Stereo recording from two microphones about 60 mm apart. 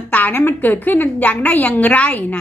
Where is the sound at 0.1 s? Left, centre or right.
Left.